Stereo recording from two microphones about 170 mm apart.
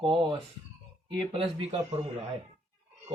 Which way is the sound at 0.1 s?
30° right (ahead or behind).